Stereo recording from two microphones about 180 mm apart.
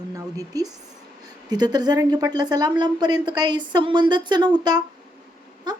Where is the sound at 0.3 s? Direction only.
20° right (ahead or behind).